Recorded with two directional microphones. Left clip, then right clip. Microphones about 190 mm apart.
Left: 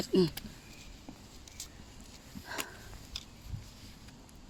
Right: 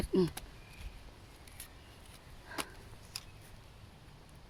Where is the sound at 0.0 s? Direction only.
15° left (ahead or behind).